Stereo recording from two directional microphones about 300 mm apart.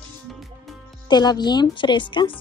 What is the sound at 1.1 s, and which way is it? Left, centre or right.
Speech, centre.